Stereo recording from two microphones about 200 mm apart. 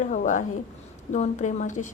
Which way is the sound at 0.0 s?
40° left (ahead or behind).